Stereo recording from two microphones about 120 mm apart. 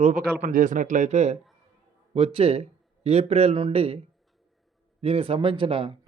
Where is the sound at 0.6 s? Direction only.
90° right; by 1.4 s 70° right (ahead or behind).